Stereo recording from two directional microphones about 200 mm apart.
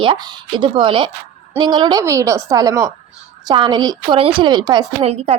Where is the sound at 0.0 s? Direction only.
25° right (ahead or behind).